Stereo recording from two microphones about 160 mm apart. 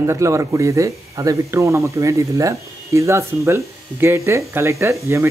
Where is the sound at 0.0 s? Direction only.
20° right (ahead or behind).